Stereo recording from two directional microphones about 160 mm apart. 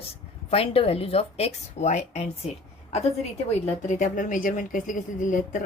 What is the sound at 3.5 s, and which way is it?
A woman's voice, 45° left (ahead or behind).